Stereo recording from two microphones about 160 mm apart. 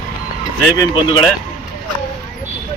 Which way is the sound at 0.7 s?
25° left (ahead or behind).